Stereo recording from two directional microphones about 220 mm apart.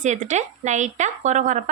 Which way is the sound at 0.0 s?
35° right (ahead or behind).